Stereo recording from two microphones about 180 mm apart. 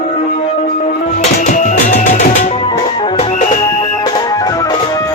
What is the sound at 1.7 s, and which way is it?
Music, 40° left (ahead or behind).